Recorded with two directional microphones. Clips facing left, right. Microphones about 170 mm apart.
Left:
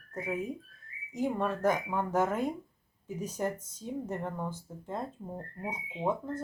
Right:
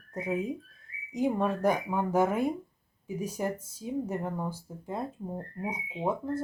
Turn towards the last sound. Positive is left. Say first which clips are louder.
# right 2 dB
turn(degrees=-10)  # may be behind; listen again after turning